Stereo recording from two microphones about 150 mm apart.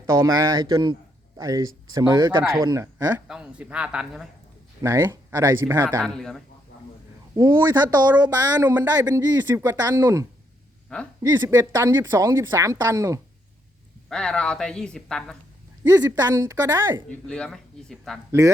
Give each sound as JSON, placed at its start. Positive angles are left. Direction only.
{"t": 0.0, "sound": "a woman's voice", "side_deg": -20}
{"t": 4.8, "sound": "a man's voice", "side_deg": -20}
{"t": 6.0, "sound": "speech", "side_deg": 0}
{"t": 7.3, "sound": "a woman's voice", "side_deg": -25}
{"t": 8.6, "sound": "a man's voice", "side_deg": -10}
{"t": 9.0, "sound": "a woman's voice", "side_deg": -25}
{"t": 10.8, "sound": "speech", "side_deg": 5}
{"t": 11.2, "sound": "a woman's voice", "side_deg": -15}
{"t": 14.1, "sound": "speech", "side_deg": 5}
{"t": 15.8, "sound": "a woman's voice", "side_deg": -25}
{"t": 17.1, "sound": "speech", "side_deg": 5}
{"t": 18.3, "sound": "a woman's voice", "side_deg": -20}